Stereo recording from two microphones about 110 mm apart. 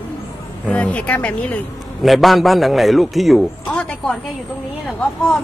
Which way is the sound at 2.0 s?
Centre (ahead or behind).